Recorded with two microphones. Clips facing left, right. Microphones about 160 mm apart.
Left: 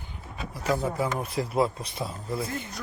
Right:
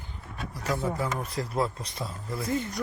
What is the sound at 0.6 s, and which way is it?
Speech, 25° left (ahead or behind).